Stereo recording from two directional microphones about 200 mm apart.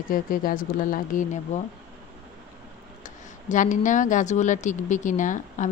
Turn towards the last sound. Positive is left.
turn(degrees=40)  # may be behind; listen again after turning